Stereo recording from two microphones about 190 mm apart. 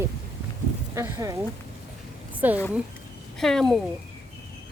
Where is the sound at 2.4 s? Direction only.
10° right (ahead or behind).